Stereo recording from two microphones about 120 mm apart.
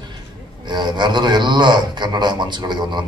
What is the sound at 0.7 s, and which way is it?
A man's voice, 40° right (ahead or behind).